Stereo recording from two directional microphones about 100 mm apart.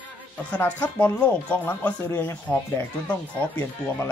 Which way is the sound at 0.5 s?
15° left (ahead or behind).